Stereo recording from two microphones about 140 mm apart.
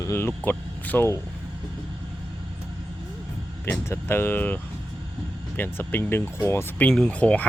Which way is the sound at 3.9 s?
15° left (ahead or behind).